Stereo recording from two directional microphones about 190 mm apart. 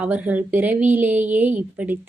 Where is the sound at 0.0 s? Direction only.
10° right (ahead or behind).